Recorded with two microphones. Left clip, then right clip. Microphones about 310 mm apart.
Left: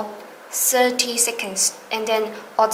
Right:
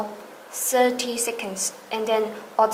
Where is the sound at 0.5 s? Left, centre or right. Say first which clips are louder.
Left 2 dB; centre.